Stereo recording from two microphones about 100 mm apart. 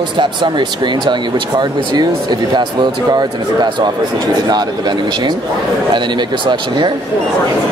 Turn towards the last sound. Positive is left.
turn(degrees=-50)  # may be behind; listen again after turning